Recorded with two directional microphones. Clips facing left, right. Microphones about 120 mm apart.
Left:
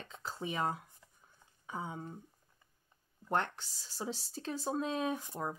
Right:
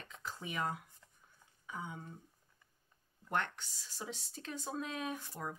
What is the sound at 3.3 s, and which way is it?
Speech, 35° left (ahead or behind).